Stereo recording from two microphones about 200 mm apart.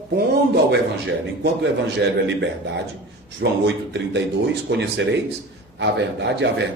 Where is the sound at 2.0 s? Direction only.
60° right (ahead or behind).